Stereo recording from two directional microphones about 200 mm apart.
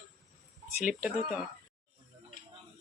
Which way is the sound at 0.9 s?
10° right (ahead or behind).